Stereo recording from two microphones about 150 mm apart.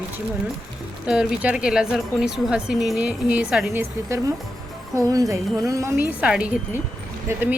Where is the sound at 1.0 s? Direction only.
5° right (ahead or behind).